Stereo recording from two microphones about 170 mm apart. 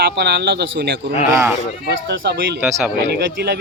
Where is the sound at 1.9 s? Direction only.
80° right.